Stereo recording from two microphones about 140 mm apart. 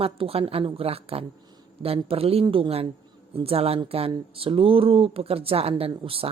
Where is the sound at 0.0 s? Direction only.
45° right (ahead or behind).